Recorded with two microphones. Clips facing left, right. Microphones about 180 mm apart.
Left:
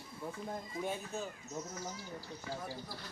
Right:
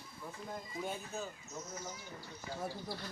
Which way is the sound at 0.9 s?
Centre (ahead or behind).